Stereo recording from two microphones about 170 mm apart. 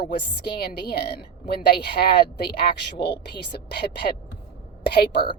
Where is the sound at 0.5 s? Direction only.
70° left (ahead or behind).